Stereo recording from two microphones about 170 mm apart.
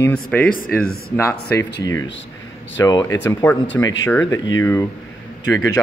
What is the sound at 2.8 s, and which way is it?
A man's voice, 25° left (ahead or behind).